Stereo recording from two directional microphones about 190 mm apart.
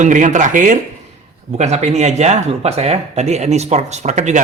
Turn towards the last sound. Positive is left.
turn(degrees=-40)  # may be behind; listen again after turning